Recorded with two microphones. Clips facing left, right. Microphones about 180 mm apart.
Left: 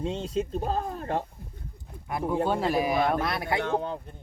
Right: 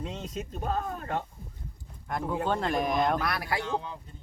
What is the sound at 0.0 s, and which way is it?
Speech, 30° left (ahead or behind).